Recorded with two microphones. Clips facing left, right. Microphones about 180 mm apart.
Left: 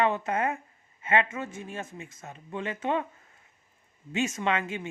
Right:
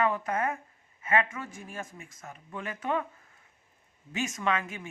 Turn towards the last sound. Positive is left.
turn(degrees=25)  # may be behind; listen again after turning